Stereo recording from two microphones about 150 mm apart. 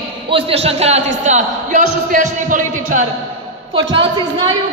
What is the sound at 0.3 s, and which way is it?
A man's voice, 40° right (ahead or behind).